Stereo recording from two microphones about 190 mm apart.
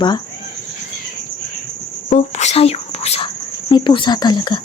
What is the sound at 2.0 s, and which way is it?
Whispering, 35° left (ahead or behind).